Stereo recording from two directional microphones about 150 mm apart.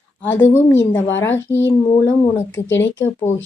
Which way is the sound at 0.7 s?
15° left (ahead or behind).